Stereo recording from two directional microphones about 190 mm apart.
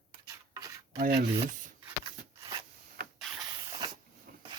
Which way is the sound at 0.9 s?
55° right (ahead or behind).